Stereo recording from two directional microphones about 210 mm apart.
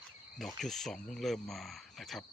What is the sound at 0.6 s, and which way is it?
Speech, centre (ahead or behind).